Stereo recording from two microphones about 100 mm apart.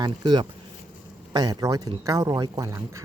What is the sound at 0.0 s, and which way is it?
Speech, 45° right (ahead or behind).